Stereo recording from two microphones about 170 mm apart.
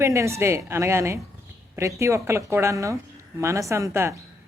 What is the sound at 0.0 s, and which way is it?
Speech, 15° right (ahead or behind).